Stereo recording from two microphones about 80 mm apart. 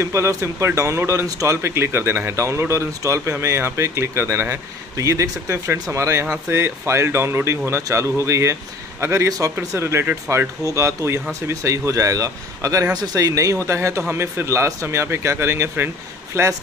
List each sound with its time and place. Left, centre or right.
0.0 s speech: right
10.7 s speech: right